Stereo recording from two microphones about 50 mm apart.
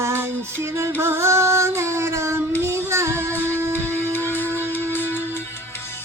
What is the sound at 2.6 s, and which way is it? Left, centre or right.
Child singing, right.